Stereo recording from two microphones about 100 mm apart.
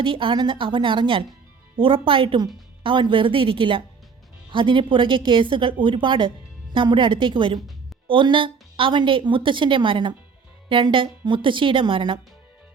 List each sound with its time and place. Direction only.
0.0 s a woman's voice: 60° right (ahead or behind)